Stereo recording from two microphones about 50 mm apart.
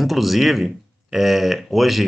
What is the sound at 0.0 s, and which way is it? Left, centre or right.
Speech, centre.